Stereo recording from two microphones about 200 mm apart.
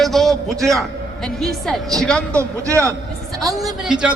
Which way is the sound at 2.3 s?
15° right (ahead or behind).